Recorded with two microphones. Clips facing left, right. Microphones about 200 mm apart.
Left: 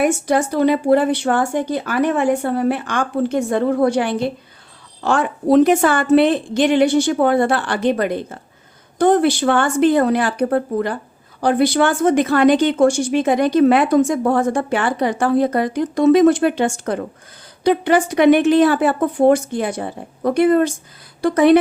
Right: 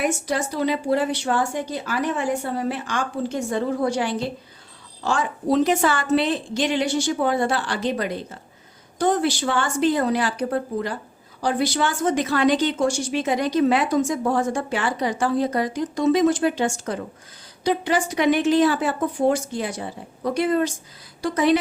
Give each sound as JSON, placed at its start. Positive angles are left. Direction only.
{"t": 0.0, "sound": "speech", "side_deg": 55}